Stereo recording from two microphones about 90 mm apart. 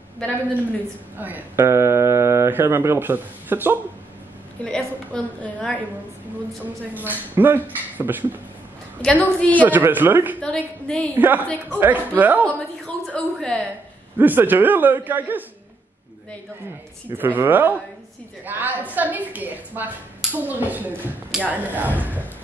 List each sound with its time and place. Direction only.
1.1 s speech: 20° right (ahead or behind)
4.6 s a sound: 10° left (ahead or behind)
6.6 s a woman's voice: 20° right (ahead or behind)
9.0 s a woman's voice: 15° left (ahead or behind)
9.6 s a woman's voice: 20° right (ahead or behind)
10.4 s a woman's voice: 10° left (ahead or behind)
11.1 s a woman's voice: 20° right (ahead or behind)
12.4 s a woman's voice: 10° left (ahead or behind)
14.1 s a woman's voice: 20° right (ahead or behind)
17.2 s a woman's voice: 20° right (ahead or behind)